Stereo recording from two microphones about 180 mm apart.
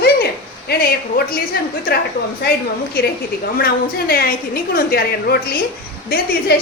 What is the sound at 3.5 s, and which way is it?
A woman's voice, 55° left (ahead or behind).